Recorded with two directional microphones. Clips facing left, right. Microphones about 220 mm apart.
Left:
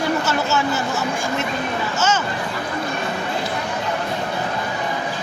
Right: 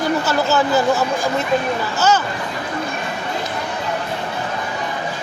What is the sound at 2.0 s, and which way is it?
Speech, 35° right (ahead or behind).